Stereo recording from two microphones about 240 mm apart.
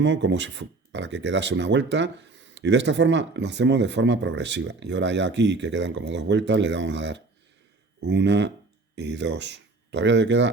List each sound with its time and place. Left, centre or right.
0.0 s speech: right